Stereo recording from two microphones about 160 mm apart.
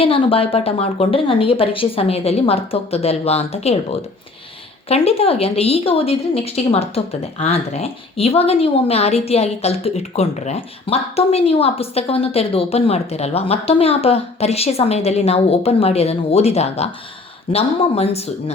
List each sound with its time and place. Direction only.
0.0 s a woman's voice: 35° left (ahead or behind)
4.9 s a woman's voice: 40° left (ahead or behind)